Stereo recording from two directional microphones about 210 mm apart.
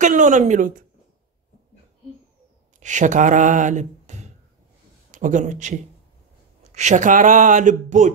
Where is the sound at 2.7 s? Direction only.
35° right (ahead or behind).